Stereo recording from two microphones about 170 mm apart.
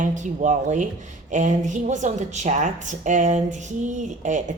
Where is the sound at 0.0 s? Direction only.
45° right (ahead or behind).